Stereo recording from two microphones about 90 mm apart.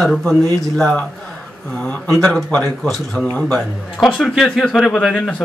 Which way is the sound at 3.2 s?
10° left (ahead or behind).